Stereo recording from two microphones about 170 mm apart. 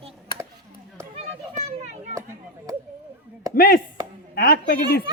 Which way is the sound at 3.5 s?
55° left (ahead or behind).